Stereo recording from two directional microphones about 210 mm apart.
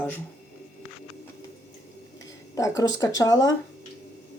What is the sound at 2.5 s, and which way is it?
Speech, 15° left (ahead or behind).